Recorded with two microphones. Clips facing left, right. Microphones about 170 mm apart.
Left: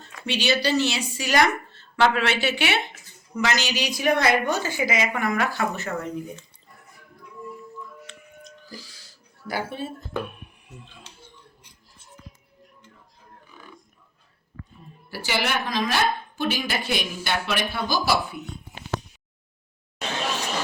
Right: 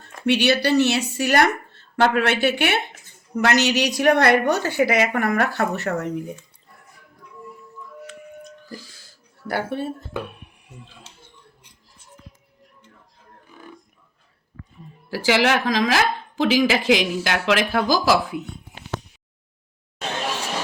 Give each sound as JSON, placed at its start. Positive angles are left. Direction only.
{"t": 0.3, "sound": "a woman's voice", "side_deg": -65}
{"t": 8.4, "sound": "music", "side_deg": -50}
{"t": 15.1, "sound": "speech", "side_deg": -90}